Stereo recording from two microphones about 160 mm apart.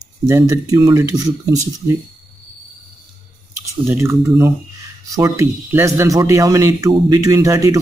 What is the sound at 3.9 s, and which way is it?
Speech, 15° right (ahead or behind).